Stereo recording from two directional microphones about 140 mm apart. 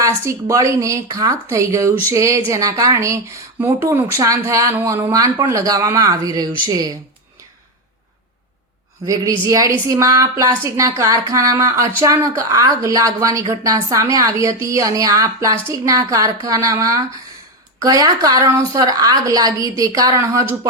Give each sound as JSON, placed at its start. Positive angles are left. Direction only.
{"t": 0.0, "sound": "a woman's voice", "side_deg": -20}
{"t": 9.0, "sound": "a woman's voice", "side_deg": -25}